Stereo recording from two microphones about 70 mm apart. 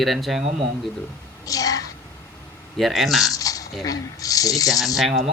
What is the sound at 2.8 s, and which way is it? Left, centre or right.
Speech, centre.